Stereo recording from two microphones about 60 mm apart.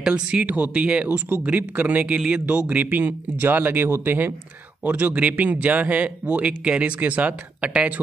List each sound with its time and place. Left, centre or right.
0.0 s a man's voice: centre